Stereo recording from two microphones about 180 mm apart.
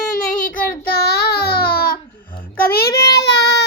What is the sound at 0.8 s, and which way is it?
Child singing, 60° left (ahead or behind).